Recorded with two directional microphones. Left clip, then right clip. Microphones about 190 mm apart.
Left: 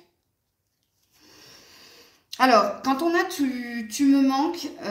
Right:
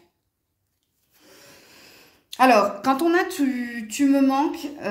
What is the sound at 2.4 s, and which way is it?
Speech, 50° right (ahead or behind).